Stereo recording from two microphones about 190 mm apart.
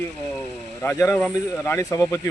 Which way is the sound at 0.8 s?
10° left (ahead or behind).